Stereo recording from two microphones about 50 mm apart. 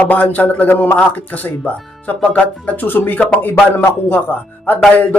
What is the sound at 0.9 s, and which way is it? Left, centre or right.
Speech, left.